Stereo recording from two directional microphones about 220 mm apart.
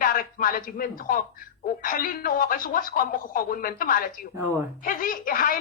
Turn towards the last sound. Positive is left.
turn(degrees=40)  # may be behind; listen again after turning